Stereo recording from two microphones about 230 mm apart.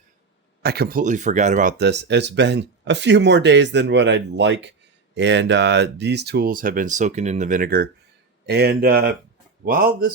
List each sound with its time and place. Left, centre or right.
0.6 s speech: right